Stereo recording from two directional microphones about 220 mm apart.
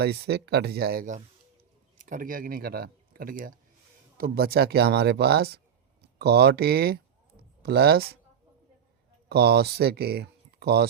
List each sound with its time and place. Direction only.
0.0 s speech: 45° right (ahead or behind)
9.3 s speech: 45° right (ahead or behind)